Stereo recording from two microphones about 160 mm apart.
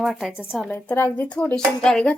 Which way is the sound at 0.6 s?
10° left (ahead or behind).